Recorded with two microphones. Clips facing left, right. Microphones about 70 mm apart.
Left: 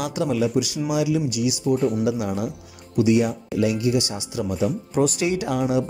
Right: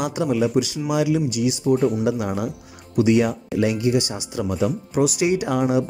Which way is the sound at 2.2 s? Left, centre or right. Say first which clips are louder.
Right 1 dB; right.